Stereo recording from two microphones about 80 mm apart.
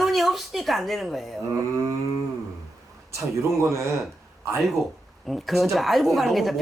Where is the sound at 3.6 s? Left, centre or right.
Right.